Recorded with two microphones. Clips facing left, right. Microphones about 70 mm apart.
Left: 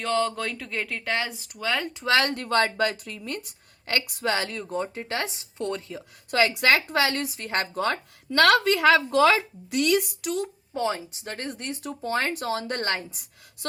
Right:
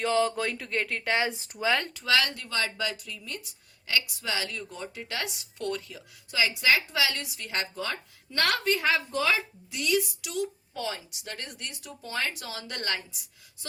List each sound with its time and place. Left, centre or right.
0.0 s speech: centre
1.2 s speech: right
1.5 s speech: centre
1.9 s speech: left
2.1 s a woman's voice: left
6.3 s a woman's voice: left